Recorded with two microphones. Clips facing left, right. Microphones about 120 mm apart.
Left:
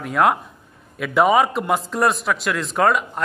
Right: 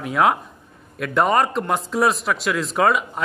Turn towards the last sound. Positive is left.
turn(degrees=0)  # may be behind; listen again after turning